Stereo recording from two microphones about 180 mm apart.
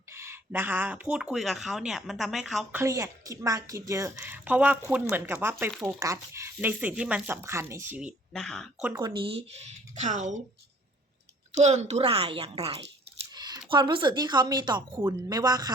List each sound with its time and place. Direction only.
0.1 s speech: 15° right (ahead or behind)
2.8 s speech: 15° right (ahead or behind); by 8.7 s 5° left (ahead or behind)
9.0 s speech: 25° right (ahead or behind); by 10.3 s 40° right (ahead or behind)
11.5 s speech: 40° right (ahead or behind)
13.3 s speech: 25° right (ahead or behind)